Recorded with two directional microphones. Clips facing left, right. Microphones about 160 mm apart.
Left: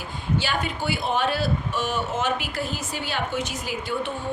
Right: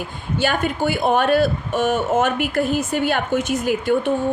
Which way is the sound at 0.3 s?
50° right (ahead or behind).